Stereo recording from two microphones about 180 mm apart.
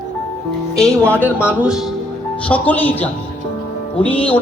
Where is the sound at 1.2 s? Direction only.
10° right (ahead or behind).